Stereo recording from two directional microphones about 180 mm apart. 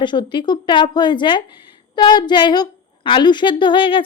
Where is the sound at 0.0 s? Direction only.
25° left (ahead or behind).